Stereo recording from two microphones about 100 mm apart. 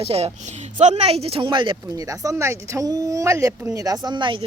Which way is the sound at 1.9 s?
35° right (ahead or behind).